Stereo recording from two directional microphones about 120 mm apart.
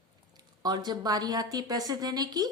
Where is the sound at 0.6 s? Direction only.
35° right (ahead or behind).